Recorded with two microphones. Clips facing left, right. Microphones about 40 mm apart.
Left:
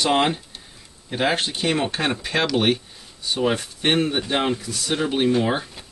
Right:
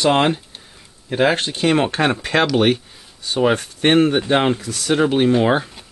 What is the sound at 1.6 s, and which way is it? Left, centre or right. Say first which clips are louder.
Speech: right 9 dB; right.